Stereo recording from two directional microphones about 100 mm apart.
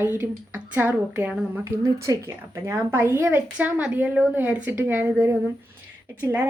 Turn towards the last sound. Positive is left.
turn(degrees=-20)  # may be behind; listen again after turning